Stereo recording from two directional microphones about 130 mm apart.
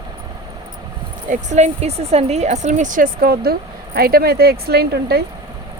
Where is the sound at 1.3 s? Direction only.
65° right (ahead or behind); by 3.1 s 80° right.